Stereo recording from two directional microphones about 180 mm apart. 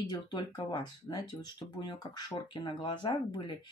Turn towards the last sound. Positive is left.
turn(degrees=25)  # may be behind; listen again after turning